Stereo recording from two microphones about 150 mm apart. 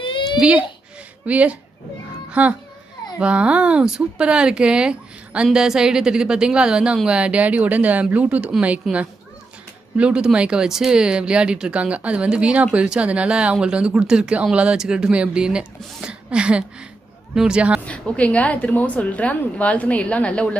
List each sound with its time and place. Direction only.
0.0 s baby cry: 30° left (ahead or behind)
0.3 s speech: 10° right (ahead or behind)
17.8 s a woman's voice: 10° left (ahead or behind)